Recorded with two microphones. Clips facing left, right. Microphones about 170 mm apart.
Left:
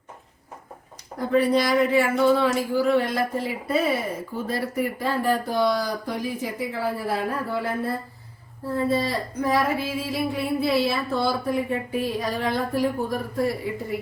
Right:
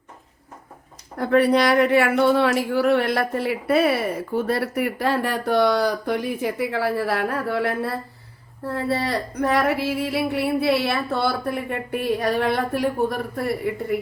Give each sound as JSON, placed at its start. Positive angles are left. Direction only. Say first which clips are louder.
{"t": 1.2, "sound": "speech", "louder": "right 3 dB", "side_deg": -65}